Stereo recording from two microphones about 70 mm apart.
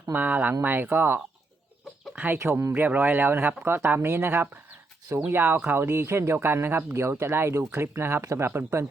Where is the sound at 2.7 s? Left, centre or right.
Right.